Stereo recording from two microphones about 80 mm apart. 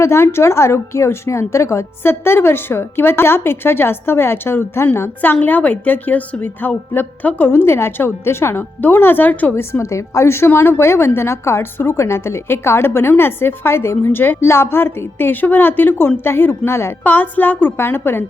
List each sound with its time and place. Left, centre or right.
0.0 s a woman's voice: left